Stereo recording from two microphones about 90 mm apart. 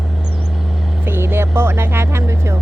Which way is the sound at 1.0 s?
25° right (ahead or behind).